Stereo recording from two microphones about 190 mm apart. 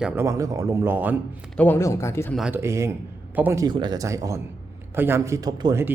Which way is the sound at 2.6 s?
15° right (ahead or behind).